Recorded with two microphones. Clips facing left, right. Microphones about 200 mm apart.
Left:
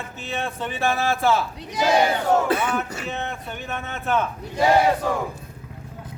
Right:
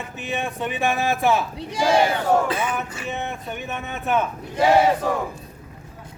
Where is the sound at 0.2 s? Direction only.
15° right (ahead or behind).